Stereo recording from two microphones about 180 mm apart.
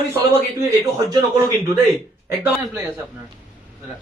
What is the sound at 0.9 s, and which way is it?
Speech, 25° right (ahead or behind).